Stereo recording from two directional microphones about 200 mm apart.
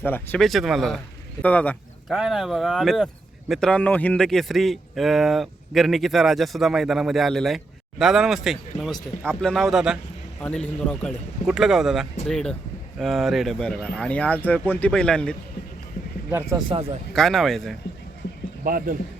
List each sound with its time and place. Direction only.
0.0 s speech: 10° left (ahead or behind)
16.3 s speech: 20° right (ahead or behind)
17.2 s speech: centre (ahead or behind)
18.6 s speech: 45° right (ahead or behind)